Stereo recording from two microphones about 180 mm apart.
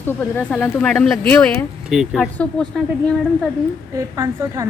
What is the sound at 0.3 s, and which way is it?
A woman's voice, 10° left (ahead or behind).